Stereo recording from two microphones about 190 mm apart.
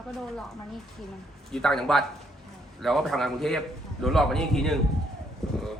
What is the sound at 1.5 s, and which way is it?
A man's voice, 5° left (ahead or behind).